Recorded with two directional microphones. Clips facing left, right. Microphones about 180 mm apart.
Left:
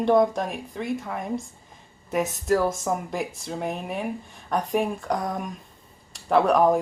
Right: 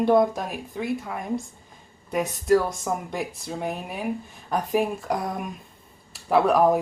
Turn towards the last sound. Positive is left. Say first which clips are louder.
# even
turn(degrees=-5)  # may be behind; listen again after turning